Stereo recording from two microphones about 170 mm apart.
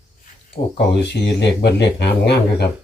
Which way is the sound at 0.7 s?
90° left.